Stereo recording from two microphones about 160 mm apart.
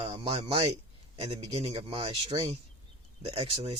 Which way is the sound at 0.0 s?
35° right (ahead or behind).